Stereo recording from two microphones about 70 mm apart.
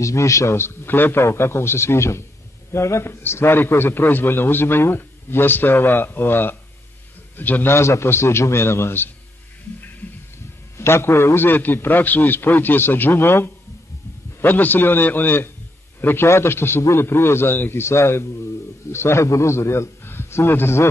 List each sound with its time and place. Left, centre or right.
0.0 s a man's voice: left
7.7 s a man's voice: left
10.8 s a man's voice: left